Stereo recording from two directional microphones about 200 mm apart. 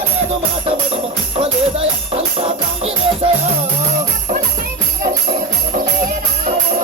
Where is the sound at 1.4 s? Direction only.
30° right (ahead or behind).